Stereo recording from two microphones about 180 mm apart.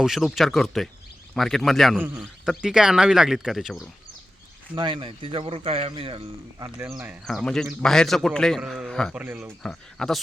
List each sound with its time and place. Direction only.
0.0 s a man's voice: centre (ahead or behind)
4.7 s speech: 25° right (ahead or behind)
6.6 s speech: 15° right (ahead or behind)
7.3 s a man's voice: centre (ahead or behind)
9.1 s speech: 10° right (ahead or behind)
9.6 s a man's voice: 5° left (ahead or behind)